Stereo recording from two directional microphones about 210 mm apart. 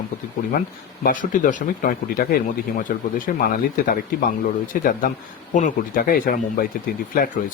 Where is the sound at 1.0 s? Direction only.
40° left (ahead or behind).